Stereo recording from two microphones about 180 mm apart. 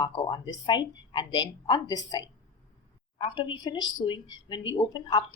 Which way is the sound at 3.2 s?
25° left (ahead or behind).